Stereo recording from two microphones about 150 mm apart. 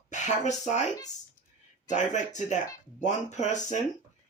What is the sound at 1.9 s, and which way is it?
Speech, 55° left (ahead or behind).